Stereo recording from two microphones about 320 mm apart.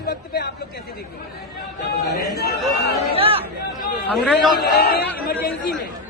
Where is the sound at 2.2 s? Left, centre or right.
Left.